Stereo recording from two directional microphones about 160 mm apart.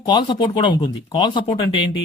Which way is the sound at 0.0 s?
30° left (ahead or behind).